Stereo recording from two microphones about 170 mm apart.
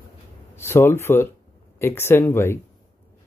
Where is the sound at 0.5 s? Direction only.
15° left (ahead or behind).